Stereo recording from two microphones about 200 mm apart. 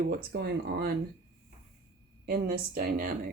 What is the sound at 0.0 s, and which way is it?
Speech, 45° right (ahead or behind).